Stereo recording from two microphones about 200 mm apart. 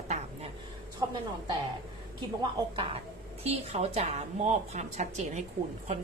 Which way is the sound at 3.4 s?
30° right (ahead or behind).